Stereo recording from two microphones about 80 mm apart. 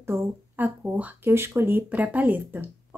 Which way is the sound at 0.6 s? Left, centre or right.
Centre.